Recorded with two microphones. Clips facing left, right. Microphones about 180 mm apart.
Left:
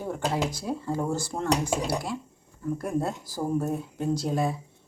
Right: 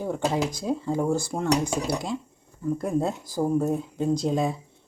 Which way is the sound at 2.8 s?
15° right (ahead or behind).